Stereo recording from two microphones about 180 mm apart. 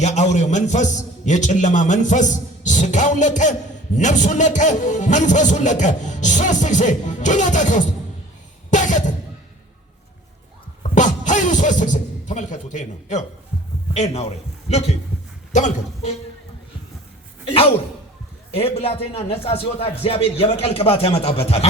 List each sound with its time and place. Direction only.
0.0 s a man's voice: 40° left (ahead or behind)
8.7 s music: 45° left (ahead or behind)
10.8 s music: 45° left (ahead or behind)
13.9 s a man's voice: 35° left (ahead or behind)
18.5 s a man's voice: 35° left (ahead or behind)